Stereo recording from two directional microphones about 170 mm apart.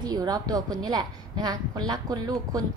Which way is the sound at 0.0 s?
20° right (ahead or behind).